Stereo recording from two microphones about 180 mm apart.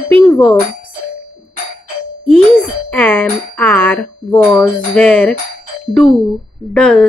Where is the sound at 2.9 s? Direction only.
10° left (ahead or behind).